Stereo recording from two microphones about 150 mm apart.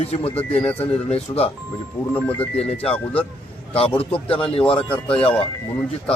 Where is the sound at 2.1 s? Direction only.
10° left (ahead or behind).